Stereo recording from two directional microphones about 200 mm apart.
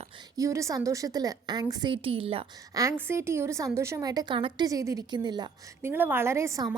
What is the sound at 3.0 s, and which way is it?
A woman's voice, 15° right (ahead or behind).